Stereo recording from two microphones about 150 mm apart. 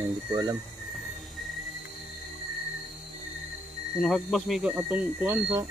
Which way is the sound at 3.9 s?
Centre (ahead or behind).